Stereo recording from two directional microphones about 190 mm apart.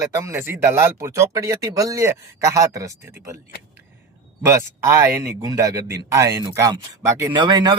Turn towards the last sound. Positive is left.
turn(degrees=-25)  # may be behind; listen again after turning